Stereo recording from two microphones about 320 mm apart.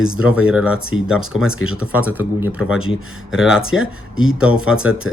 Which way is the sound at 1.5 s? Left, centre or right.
Left.